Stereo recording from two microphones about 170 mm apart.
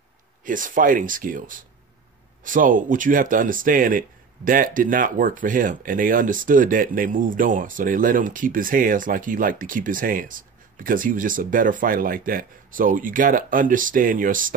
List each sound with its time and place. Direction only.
0.5 s speech: 50° right (ahead or behind)